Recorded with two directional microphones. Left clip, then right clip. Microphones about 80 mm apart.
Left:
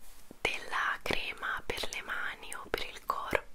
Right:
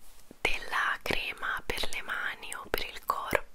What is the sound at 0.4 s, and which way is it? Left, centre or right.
Whispering, centre.